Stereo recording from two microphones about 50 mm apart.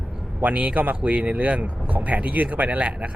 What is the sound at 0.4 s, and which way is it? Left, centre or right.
Speech, right.